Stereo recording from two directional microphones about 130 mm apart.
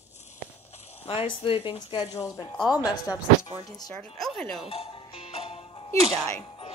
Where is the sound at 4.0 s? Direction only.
5° left (ahead or behind).